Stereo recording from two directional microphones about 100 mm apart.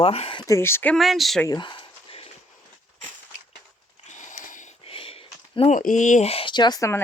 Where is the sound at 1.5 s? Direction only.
50° left (ahead or behind); by 2.3 s 70° left (ahead or behind).